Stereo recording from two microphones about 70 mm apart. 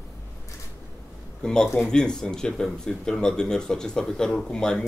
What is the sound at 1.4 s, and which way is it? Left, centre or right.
Speech, centre.